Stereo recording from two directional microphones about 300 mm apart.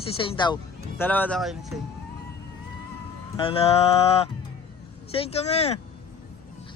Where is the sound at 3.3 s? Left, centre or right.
Centre.